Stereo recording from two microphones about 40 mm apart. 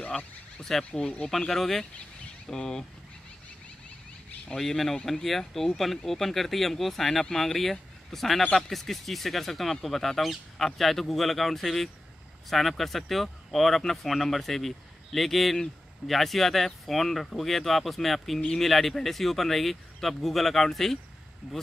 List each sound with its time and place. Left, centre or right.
0.7 s speech: centre
4.6 s a man's voice: centre